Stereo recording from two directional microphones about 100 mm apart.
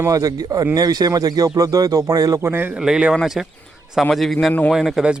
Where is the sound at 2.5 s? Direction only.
20° right (ahead or behind).